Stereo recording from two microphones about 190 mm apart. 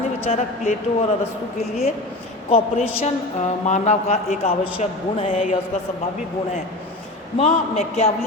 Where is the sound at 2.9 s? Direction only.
35° left (ahead or behind).